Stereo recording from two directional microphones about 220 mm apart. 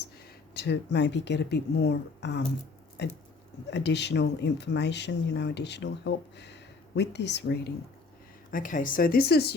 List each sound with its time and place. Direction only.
0.5 s speech: 50° left (ahead or behind)
8.4 s speech: 35° left (ahead or behind)